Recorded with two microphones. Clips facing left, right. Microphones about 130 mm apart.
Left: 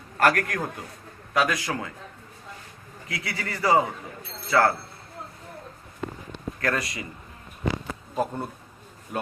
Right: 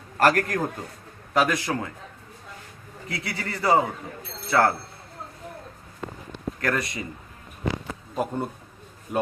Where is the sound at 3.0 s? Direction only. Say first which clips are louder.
Right 1 dB; 25° right (ahead or behind).